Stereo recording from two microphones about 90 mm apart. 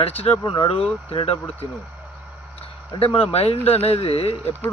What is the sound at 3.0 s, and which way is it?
A man's voice, 90° left.